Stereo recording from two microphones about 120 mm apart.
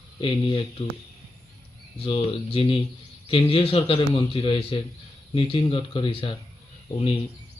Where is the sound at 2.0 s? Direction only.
50° left (ahead or behind).